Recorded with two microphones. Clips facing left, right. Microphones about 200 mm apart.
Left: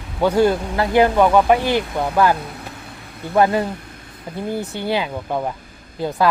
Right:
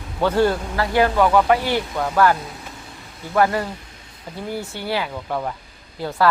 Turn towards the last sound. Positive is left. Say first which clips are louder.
# left 1 dB
turn(degrees=20)  # may be behind; listen again after turning